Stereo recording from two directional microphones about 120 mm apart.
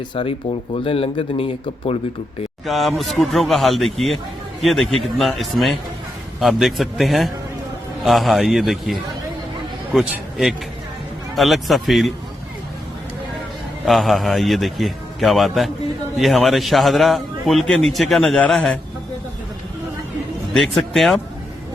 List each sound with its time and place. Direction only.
0.1 s speech: 50° left (ahead or behind)
2.6 s a man's voice: centre (ahead or behind)
10.1 s a man's voice: 5° right (ahead or behind)
13.8 s a man's voice: centre (ahead or behind)
20.5 s a man's voice: centre (ahead or behind)